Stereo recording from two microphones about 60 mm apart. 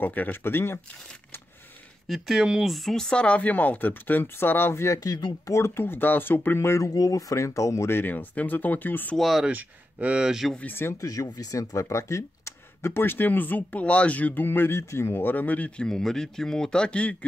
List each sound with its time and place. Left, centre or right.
0.0 s speech: left
2.0 s speech: centre
2.7 s speech: centre; by 4.8 s left
4.8 s speech: left
5.6 s speech: left
6.8 s speech: left
7.9 s speech: left
9.1 s speech: centre
9.5 s speech: right
10.2 s speech: centre
10.6 s speech: left
11.1 s speech: left
15.3 s speech: left
15.8 s speech: centre